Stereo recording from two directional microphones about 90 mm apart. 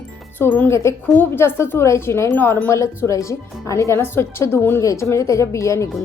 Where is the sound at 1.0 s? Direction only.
20° left (ahead or behind).